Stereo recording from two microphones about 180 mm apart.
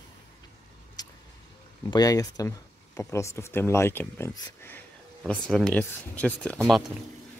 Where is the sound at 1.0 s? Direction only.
20° left (ahead or behind).